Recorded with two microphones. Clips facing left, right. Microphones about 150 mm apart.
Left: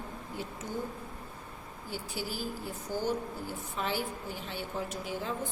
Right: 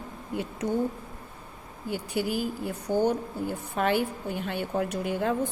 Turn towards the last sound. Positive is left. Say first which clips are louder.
# right 8 dB
turn(degrees=-60)  # may be behind; listen again after turning